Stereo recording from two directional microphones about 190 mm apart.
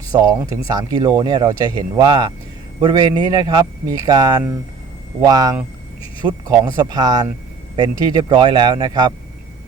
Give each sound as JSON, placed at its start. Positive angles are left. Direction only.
{"t": 0.1, "sound": "speech", "side_deg": -20}